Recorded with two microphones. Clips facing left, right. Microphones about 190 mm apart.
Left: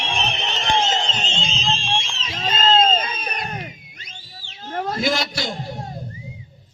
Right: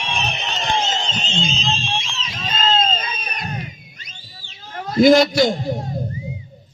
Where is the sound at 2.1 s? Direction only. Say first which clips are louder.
Left 1 dB; 45° left (ahead or behind).